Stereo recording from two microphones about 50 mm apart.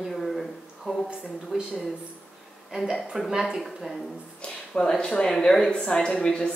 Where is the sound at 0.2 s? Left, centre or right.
Centre.